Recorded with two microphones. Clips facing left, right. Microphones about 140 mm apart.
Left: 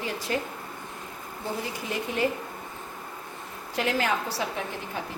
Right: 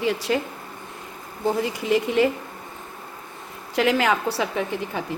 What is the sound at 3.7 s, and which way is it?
Speech, 90° right.